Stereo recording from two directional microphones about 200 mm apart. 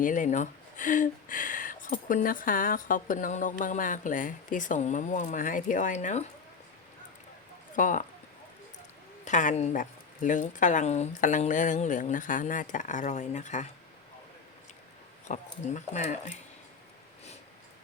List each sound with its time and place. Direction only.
0.0 s speech: 40° left (ahead or behind)
7.8 s speech: 40° left (ahead or behind)
9.2 s speech: 40° left (ahead or behind)
15.3 s speech: 35° left (ahead or behind)